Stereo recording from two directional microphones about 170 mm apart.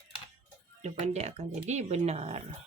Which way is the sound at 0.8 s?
40° right (ahead or behind).